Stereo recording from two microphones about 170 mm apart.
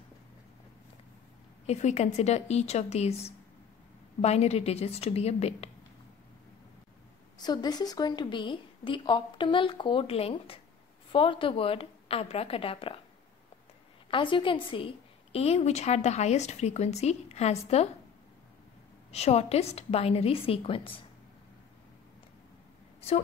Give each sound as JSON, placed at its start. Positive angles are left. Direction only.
{"t": 1.7, "sound": "a woman's voice", "side_deg": 40}
{"t": 7.3, "sound": "a woman's voice", "side_deg": 25}
{"t": 14.1, "sound": "a woman's voice", "side_deg": 30}
{"t": 19.1, "sound": "a woman's voice", "side_deg": 40}
{"t": 22.9, "sound": "a sound", "side_deg": 40}